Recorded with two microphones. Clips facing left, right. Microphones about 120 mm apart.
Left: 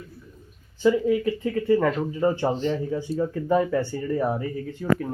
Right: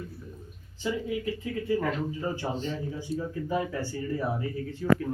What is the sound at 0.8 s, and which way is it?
Speech, 70° left (ahead or behind).